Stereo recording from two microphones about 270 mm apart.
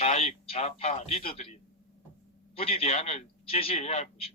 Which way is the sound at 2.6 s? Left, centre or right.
Left.